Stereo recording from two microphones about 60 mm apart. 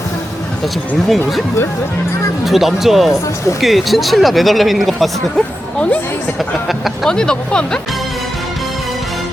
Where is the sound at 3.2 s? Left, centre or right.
Left.